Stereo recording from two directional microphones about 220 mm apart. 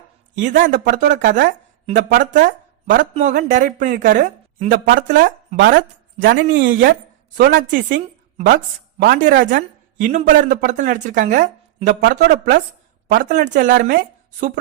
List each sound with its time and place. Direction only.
0.3 s speech: 35° right (ahead or behind)
2.9 s speech: 35° right (ahead or behind)
6.5 s a woman's voice: 55° right (ahead or behind)
7.3 s speech: 40° right (ahead or behind)
11.9 s speech: 50° right (ahead or behind)